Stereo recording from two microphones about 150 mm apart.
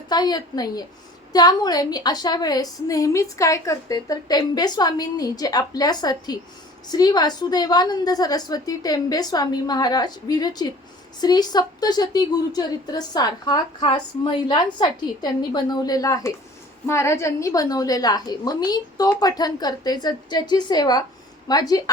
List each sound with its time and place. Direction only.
0.1 s a woman's voice: 25° left (ahead or behind)